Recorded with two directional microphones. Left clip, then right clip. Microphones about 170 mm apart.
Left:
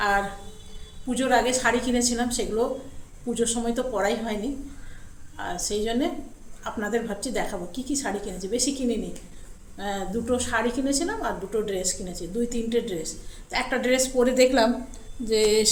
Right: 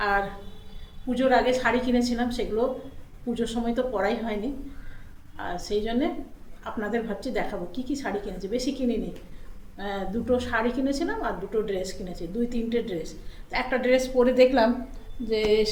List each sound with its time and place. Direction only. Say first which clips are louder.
0.0 s a sound: left 1 dB; 15° left (ahead or behind)
1.1 s a woman's voice: right 1 dB; 15° left (ahead or behind)
5.4 s a woman's voice: left 1 dB; 15° left (ahead or behind)
15.3 s speech: left 2 dB; 25° left (ahead or behind)